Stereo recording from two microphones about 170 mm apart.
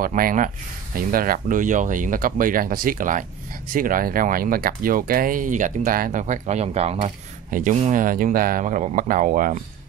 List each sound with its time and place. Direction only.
0.0 s speech: 55° right (ahead or behind)